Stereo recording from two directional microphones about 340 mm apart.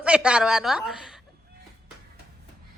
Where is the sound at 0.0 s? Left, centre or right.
Centre.